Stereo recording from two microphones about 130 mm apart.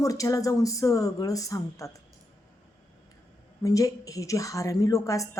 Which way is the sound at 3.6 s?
25° left (ahead or behind).